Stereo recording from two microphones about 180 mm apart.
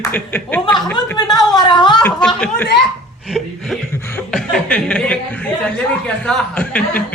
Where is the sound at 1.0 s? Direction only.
20° left (ahead or behind).